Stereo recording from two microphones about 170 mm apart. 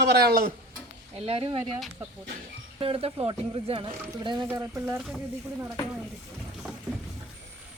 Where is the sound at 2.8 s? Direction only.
35° right (ahead or behind); by 5.0 s 15° right (ahead or behind).